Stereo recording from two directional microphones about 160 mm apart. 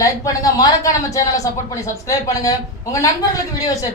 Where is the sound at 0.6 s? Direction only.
20° left (ahead or behind).